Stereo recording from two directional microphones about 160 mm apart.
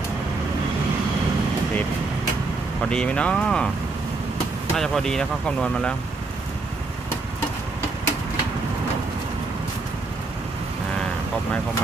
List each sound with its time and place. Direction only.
2.9 s speech: 5° left (ahead or behind)
4.7 s speech: centre (ahead or behind)